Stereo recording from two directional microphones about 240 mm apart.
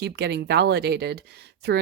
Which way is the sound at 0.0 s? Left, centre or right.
Right.